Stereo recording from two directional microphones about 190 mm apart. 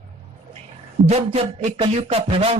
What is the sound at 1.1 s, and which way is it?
Speech, 35° right (ahead or behind).